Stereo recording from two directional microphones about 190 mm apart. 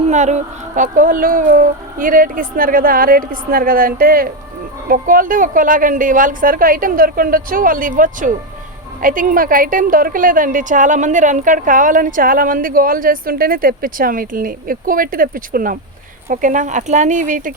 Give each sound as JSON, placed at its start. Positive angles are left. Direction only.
{"t": 0.1, "sound": "a woman's voice", "side_deg": -40}